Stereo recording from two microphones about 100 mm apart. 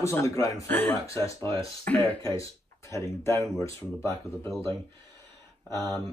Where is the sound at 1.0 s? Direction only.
30° left (ahead or behind).